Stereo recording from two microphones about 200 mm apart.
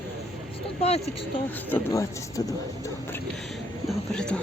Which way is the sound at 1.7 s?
15° left (ahead or behind).